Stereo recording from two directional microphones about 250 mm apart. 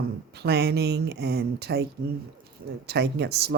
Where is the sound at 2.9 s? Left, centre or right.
Right.